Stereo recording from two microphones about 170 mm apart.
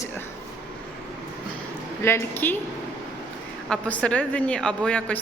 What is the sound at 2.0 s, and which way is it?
Speech, 15° left (ahead or behind).